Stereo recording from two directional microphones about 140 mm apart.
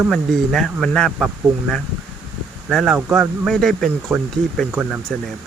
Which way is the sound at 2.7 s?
Centre (ahead or behind).